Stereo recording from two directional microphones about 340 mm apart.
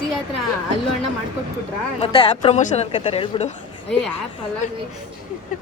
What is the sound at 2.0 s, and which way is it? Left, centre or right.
Speech, centre.